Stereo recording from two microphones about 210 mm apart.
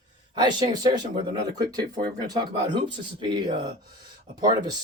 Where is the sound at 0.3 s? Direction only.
20° right (ahead or behind).